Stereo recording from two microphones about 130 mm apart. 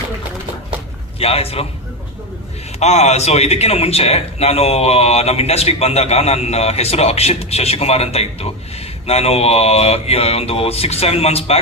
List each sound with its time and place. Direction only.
1.2 s a man's voice: 50° left (ahead or behind)
2.7 s a man's voice: 55° left (ahead or behind)